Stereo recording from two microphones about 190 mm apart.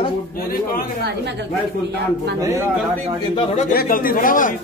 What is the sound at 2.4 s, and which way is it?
Speech, 15° right (ahead or behind).